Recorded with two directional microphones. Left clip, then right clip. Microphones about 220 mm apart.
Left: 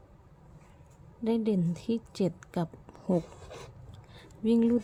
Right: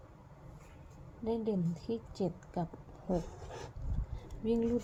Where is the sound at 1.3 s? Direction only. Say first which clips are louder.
Left 5 dB; 30° left (ahead or behind).